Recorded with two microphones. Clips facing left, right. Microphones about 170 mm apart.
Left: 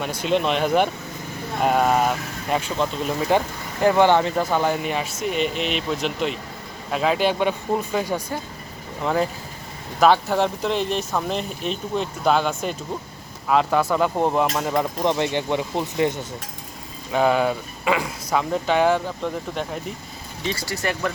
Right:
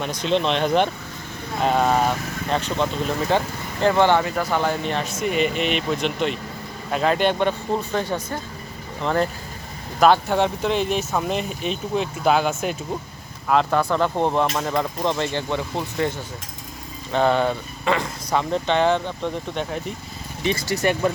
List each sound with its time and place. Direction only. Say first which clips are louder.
0.0 s speech: even; 5° left (ahead or behind)
15.0 s speech: left 2 dB; 15° left (ahead or behind)
17.1 s speech: even; 5° left (ahead or behind)
20.5 s speech: right 5 dB; 20° right (ahead or behind)